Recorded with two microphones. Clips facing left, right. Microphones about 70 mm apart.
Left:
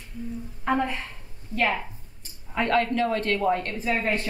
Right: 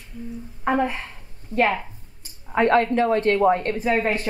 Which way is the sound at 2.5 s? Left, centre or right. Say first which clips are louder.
Right 5 dB; right.